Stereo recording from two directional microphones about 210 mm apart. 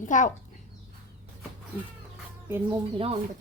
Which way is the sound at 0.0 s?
35° left (ahead or behind).